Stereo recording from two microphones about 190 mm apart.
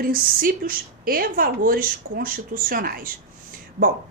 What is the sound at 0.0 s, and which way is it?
A woman's voice, 50° right (ahead or behind).